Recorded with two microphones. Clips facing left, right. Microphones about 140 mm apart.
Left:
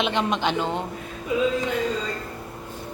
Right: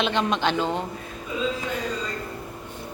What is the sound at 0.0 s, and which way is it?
Speech, 15° left (ahead or behind).